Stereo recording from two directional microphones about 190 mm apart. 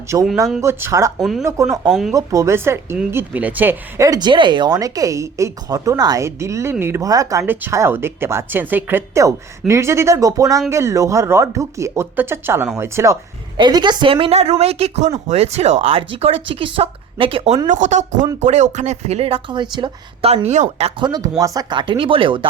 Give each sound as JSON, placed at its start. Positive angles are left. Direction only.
{"t": 0.1, "sound": "speech", "side_deg": -15}
{"t": 1.2, "sound": "speech", "side_deg": 0}
{"t": 2.1, "sound": "speech", "side_deg": -15}
{"t": 21.1, "sound": "speech", "side_deg": -20}